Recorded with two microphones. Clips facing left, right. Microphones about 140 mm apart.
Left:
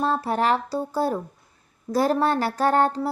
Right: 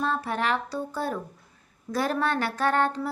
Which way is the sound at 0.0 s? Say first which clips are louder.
Left 5 dB; 35° left (ahead or behind).